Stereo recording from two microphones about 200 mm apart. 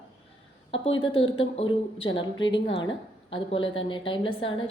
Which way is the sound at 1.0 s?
25° left (ahead or behind).